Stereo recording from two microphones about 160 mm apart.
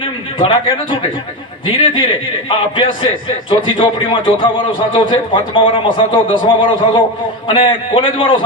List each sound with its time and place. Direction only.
0.0 s a man's voice: 30° left (ahead or behind)